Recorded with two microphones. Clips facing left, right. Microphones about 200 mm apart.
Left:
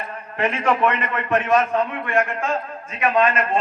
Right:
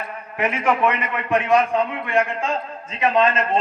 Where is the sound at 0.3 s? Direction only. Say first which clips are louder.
Even; 10° right (ahead or behind).